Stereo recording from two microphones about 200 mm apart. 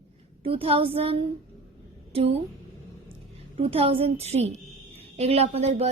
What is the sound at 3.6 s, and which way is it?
A woman's voice, 30° right (ahead or behind).